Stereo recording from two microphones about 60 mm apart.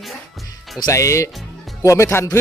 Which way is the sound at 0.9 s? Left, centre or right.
Left.